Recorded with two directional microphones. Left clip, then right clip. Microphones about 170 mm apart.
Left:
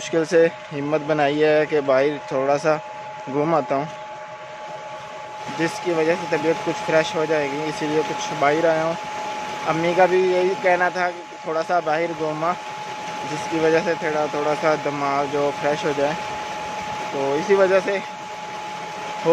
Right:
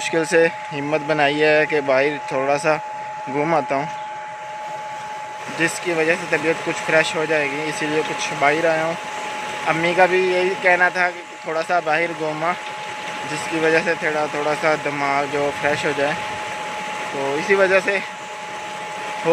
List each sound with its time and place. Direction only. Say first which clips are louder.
0.1 s speech: even; 10° left (ahead or behind)
5.6 s speech: right 2 dB; 10° left (ahead or behind)
13.6 s speech: right 1 dB; 10° left (ahead or behind)
17.3 s speech: even; 20° left (ahead or behind)
17.6 s speech: right 2 dB; 10° left (ahead or behind)